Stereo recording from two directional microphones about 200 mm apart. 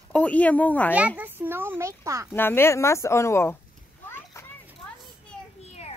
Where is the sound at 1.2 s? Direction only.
10° right (ahead or behind).